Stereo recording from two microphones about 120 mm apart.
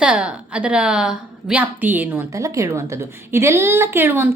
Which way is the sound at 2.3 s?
25° right (ahead or behind).